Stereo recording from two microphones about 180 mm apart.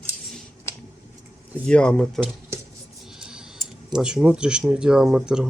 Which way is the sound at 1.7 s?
5° left (ahead or behind).